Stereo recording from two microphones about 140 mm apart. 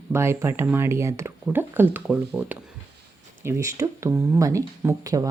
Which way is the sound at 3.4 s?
20° right (ahead or behind).